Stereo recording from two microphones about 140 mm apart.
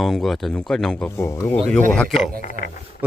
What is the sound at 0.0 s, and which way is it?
Speech, centre (ahead or behind).